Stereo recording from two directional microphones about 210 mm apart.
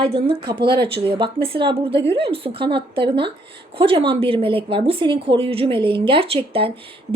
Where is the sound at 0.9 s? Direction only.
25° right (ahead or behind).